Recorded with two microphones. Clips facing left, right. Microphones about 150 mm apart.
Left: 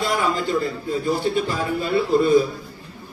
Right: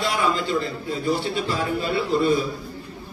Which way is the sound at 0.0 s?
45° left (ahead or behind).